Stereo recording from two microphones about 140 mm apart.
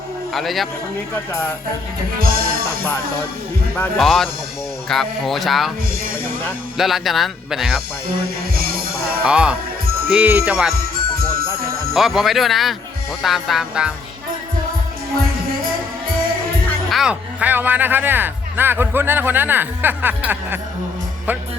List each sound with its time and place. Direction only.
0.3 s speech: centre (ahead or behind)
2.1 s music: 90° right
3.9 s speech: centre (ahead or behind)
6.7 s speech: centre (ahead or behind)
8.5 s music: 90° right
9.2 s speech: 5° right (ahead or behind)
10.9 s music: 90° right
11.9 s speech: centre (ahead or behind)
16.9 s speech: 5° right (ahead or behind)